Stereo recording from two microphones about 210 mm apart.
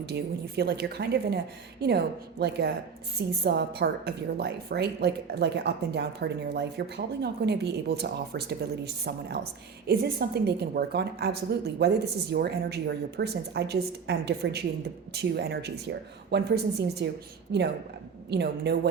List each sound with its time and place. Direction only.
0.0 s a woman's voice: 50° right (ahead or behind)
2.4 s a woman's voice: 50° right (ahead or behind)